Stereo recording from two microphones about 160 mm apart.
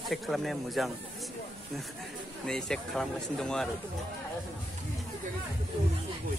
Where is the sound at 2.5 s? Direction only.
5° left (ahead or behind).